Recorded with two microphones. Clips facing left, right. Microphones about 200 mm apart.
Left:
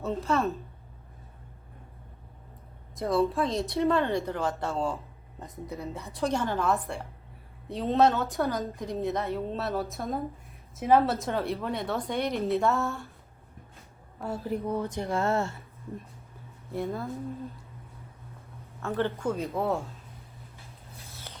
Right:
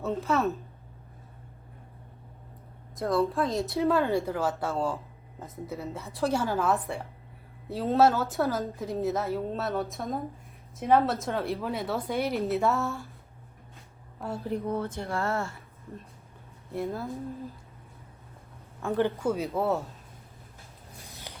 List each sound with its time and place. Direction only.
0.0 s a woman's voice: centre (ahead or behind)
2.9 s a woman's voice: centre (ahead or behind)
14.2 s a woman's voice: centre (ahead or behind)
14.6 s speech: 15° left (ahead or behind)
16.7 s a woman's voice: centre (ahead or behind)
18.8 s a woman's voice: 15° right (ahead or behind)
21.1 s spray: 15° right (ahead or behind)